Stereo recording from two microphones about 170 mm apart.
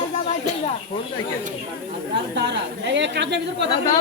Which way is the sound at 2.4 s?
90° right.